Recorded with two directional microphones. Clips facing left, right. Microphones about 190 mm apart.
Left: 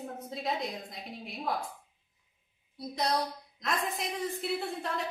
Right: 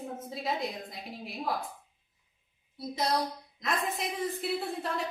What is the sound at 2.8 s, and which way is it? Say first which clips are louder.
A woman's voice: right 1 dB; centre (ahead or behind).